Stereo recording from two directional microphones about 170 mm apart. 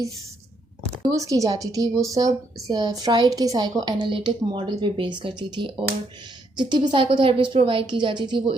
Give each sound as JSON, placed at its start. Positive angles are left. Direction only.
{"t": 1.0, "sound": "a woman's voice", "side_deg": -20}